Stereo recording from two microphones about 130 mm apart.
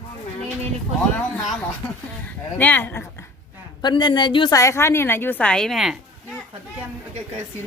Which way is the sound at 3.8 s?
35° left (ahead or behind).